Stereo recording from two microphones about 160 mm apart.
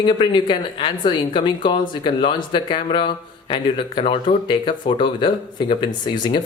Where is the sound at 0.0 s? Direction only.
30° left (ahead or behind).